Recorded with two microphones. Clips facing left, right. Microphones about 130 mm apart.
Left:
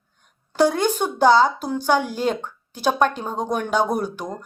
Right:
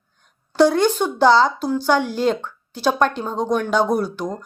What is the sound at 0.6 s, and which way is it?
Speech, 45° left (ahead or behind).